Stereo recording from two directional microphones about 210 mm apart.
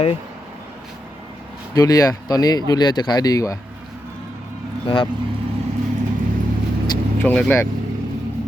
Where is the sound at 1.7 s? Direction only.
15° left (ahead or behind).